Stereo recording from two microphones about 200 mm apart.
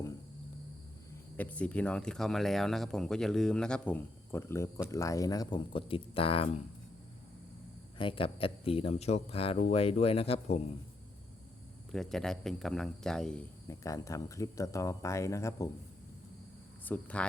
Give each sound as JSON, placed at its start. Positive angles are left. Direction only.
{"t": 1.4, "sound": "speech", "side_deg": 5}
{"t": 7.9, "sound": "speech", "side_deg": 25}
{"t": 11.9, "sound": "speech", "side_deg": 0}
{"t": 13.7, "sound": "speech", "side_deg": 15}
{"t": 16.8, "sound": "speech", "side_deg": 5}